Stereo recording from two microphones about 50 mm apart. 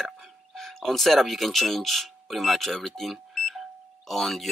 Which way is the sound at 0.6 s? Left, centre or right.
Centre.